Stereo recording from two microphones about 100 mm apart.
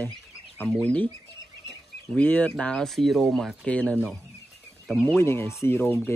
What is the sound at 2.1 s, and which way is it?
Speech, 15° left (ahead or behind).